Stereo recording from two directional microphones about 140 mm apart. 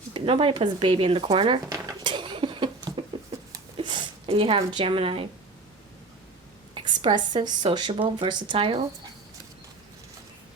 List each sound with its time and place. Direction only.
0.1 s speech: 40° right (ahead or behind)
1.6 s dishes: 20° right (ahead or behind)
2.0 s a sound: 35° right (ahead or behind)
3.8 s speech: 35° right (ahead or behind)
6.7 s speech: 35° right (ahead or behind)